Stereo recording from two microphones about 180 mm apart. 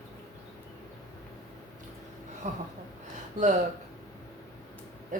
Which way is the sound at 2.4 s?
40° right (ahead or behind).